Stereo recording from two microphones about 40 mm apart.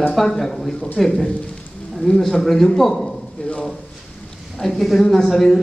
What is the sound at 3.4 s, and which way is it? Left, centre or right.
Speech, left.